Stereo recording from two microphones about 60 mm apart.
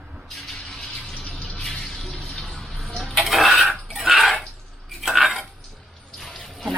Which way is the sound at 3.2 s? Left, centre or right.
Centre.